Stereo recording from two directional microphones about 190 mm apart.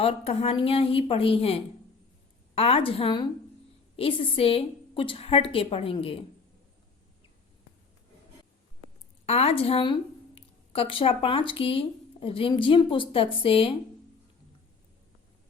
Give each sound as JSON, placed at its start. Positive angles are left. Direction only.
{"t": 0.0, "sound": "a woman's voice", "side_deg": 35}
{"t": 9.2, "sound": "speech", "side_deg": 35}